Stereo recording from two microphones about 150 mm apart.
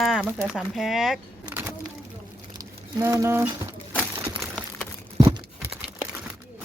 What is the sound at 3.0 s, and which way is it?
Speech, 20° right (ahead or behind).